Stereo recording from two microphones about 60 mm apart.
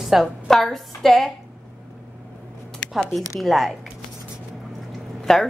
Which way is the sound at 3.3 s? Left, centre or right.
Centre.